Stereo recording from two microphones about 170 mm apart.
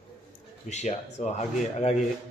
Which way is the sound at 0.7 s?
40° left (ahead or behind).